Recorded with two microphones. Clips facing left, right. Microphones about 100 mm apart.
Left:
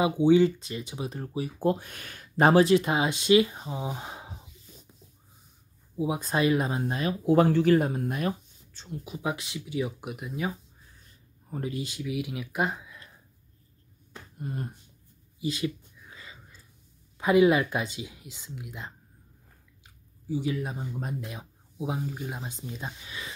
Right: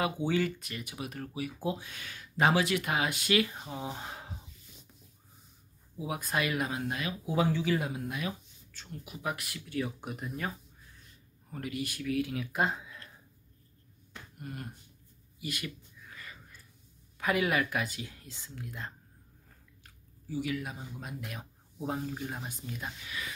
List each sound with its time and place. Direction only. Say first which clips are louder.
0.0 s speech: left 9 dB; 20° left (ahead or behind)
1.6 s speech: left 12 dB; 50° left (ahead or behind); by 4.4 s 15° left (ahead or behind)
5.9 s speech: left 6 dB; 25° left (ahead or behind)
7.2 s speech: left 9 dB; 55° left (ahead or behind)
8.8 s speech: left 5 dB; 20° left (ahead or behind); by 10.5 s 5° left (ahead or behind)
11.5 s speech: left 4 dB; 25° left (ahead or behind); by 13.0 s centre (ahead or behind)
14.1 s a sound: left 6 dB; 30° left (ahead or behind)
17.2 s speech: left 8 dB; 25° left (ahead or behind)
19.8 s chewing: even; 20° left (ahead or behind)
21.2 s speech: left 3 dB; 20° left (ahead or behind)
21.7 s speech: left 2 dB; 10° left (ahead or behind)
22.4 s speech: left 3 dB; 25° left (ahead or behind)